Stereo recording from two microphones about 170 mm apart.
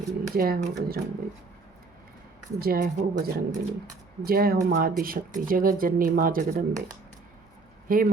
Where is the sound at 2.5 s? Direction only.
65° right (ahead or behind).